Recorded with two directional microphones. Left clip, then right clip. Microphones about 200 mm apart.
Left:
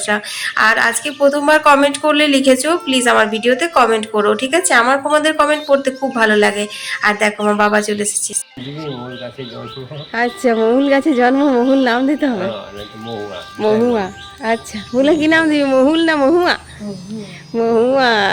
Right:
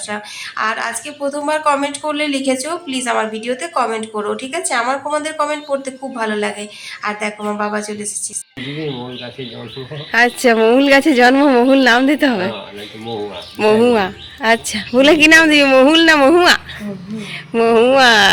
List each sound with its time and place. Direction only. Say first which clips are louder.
0.1 s speech: left 8 dB; 20° left (ahead or behind)
10.1 s a woman's voice: right 4 dB; centre (ahead or behind)
13.6 s a woman's voice: right 3 dB; centre (ahead or behind)